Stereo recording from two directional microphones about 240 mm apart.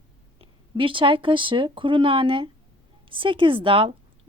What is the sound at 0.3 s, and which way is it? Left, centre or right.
Speech, right.